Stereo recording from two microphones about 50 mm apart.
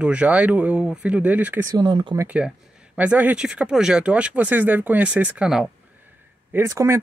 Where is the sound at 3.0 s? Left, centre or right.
Right.